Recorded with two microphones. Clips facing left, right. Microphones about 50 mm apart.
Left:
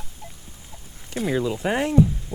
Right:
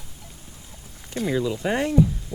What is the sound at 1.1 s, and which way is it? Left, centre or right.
Speech, centre.